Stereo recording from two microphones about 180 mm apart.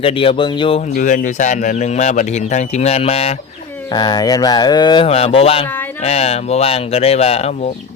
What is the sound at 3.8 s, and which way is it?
Speech, 25° left (ahead or behind).